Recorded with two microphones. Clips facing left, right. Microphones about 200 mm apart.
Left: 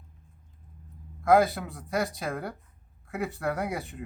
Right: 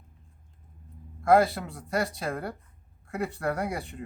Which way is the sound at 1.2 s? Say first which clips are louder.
Even; centre (ahead or behind).